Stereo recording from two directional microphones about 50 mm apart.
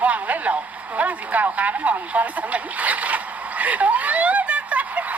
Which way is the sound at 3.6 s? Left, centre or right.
Right.